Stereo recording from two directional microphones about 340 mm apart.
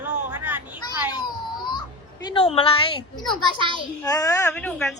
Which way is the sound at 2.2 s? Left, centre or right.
Centre.